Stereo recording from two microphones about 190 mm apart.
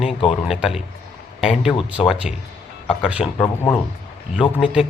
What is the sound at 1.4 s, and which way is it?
Speech, centre (ahead or behind).